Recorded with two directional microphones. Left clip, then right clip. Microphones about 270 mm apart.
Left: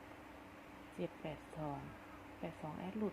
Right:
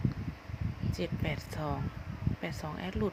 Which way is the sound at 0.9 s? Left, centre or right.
Right.